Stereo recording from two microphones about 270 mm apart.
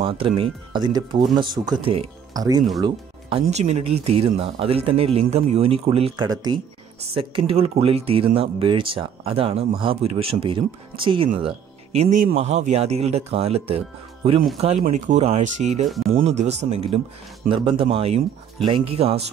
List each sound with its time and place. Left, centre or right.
0.0 s speech: centre